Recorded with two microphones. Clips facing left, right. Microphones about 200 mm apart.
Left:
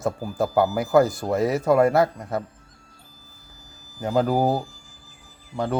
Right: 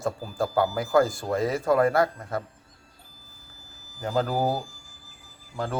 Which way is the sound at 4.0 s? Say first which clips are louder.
Left 4 dB; 20° left (ahead or behind).